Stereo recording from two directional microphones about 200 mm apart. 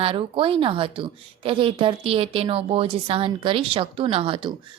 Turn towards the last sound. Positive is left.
turn(degrees=-25)  # may be behind; listen again after turning